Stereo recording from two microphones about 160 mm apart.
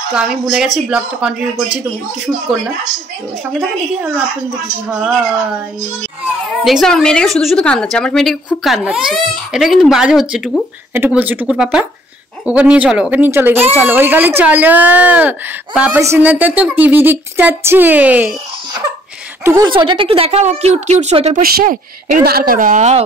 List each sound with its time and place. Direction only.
0.1 s a woman's voice: 5° right (ahead or behind)
6.2 s a woman's voice: centre (ahead or behind)
19.4 s a woman's voice: 20° right (ahead or behind)
19.7 s speech: 30° right (ahead or behind)
21.4 s a woman's voice: 65° right (ahead or behind); by 23.0 s 45° right (ahead or behind)